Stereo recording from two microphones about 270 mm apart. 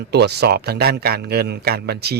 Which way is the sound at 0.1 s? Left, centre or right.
Right.